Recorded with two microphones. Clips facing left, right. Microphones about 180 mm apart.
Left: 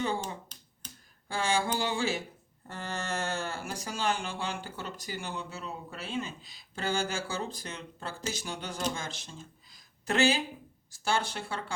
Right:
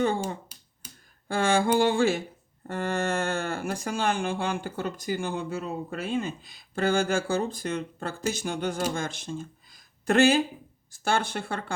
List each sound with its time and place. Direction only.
0.5 s finger snapping: 10° right (ahead or behind)
1.3 s speech: 55° right (ahead or behind)